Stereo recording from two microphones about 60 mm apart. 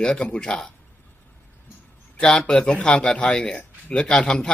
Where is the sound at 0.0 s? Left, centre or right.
Centre.